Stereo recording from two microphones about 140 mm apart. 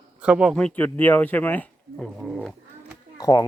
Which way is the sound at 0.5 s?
10° left (ahead or behind).